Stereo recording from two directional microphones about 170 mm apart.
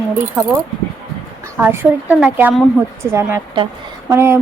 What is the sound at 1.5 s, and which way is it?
A woman's voice, 10° right (ahead or behind).